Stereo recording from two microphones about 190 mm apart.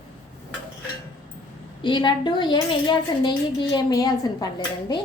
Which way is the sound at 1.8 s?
25° left (ahead or behind).